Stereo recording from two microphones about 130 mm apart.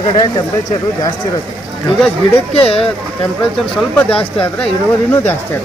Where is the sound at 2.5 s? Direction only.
45° left (ahead or behind).